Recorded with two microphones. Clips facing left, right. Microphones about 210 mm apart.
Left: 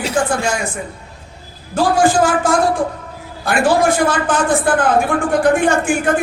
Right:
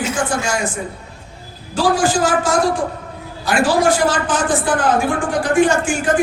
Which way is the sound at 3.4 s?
55° left (ahead or behind).